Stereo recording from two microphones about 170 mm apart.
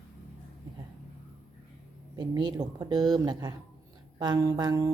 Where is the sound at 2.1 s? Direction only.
25° right (ahead or behind).